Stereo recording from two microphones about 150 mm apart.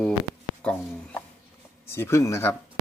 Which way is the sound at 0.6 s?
5° left (ahead or behind).